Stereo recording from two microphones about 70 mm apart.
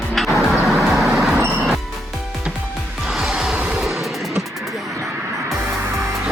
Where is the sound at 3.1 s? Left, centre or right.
Centre.